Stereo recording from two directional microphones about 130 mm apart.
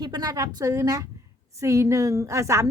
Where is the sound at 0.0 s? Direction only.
30° right (ahead or behind).